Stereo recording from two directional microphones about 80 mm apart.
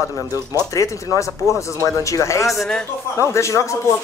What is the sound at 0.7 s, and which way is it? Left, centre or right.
Speech, left.